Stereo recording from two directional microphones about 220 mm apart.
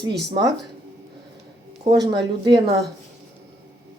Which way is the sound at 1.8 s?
20° right (ahead or behind).